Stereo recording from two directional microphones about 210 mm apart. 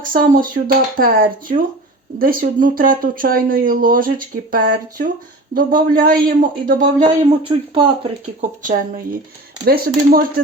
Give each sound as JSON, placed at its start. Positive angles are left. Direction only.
{"t": 0.0, "sound": "speech", "side_deg": -40}
{"t": 5.5, "sound": "speech", "side_deg": -40}
{"t": 6.8, "sound": "speech", "side_deg": -25}
{"t": 9.6, "sound": "speech", "side_deg": -45}